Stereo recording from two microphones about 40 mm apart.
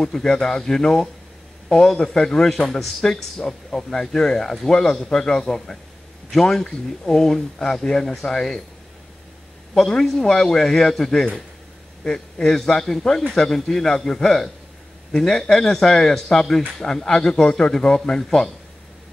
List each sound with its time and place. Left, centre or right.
0.0 s a man's voice: centre
9.8 s a man's voice: centre